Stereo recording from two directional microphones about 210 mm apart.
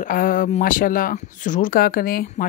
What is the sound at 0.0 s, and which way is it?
A man's voice, 40° left (ahead or behind).